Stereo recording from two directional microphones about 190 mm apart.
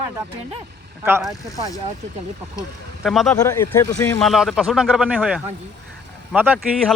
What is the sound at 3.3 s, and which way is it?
Speech, 15° left (ahead or behind).